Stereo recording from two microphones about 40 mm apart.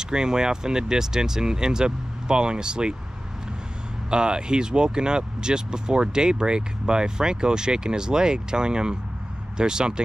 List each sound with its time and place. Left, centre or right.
0.0 s speech: centre
4.1 s speech: right